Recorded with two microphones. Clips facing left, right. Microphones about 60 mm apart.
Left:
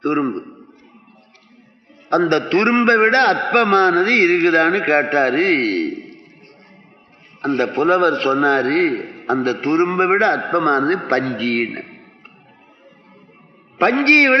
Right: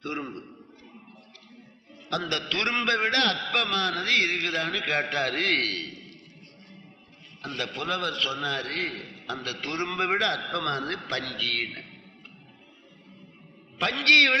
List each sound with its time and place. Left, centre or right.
0.0 s a man's voice: left
2.0 s a man's voice: left
7.4 s a man's voice: left
13.7 s a man's voice: left